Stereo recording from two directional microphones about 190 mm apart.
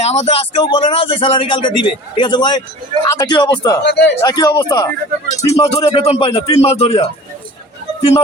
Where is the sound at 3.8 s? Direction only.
65° left (ahead or behind).